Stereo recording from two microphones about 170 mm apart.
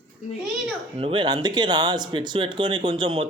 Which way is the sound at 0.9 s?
30° right (ahead or behind).